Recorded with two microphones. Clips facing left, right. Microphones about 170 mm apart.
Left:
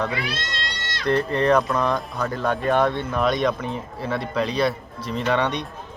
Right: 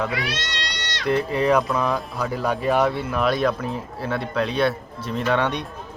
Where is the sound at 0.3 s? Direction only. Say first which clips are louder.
Even; 75° right (ahead or behind).